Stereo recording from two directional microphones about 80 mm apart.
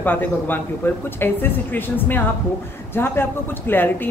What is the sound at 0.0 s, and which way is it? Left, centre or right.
A man's voice, left.